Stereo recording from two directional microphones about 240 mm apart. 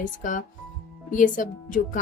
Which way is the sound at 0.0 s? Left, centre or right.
Left.